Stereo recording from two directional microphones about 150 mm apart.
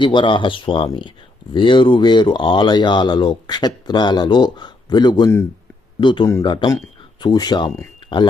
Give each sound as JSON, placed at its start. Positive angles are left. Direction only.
{"t": 0.0, "sound": "speech", "side_deg": 30}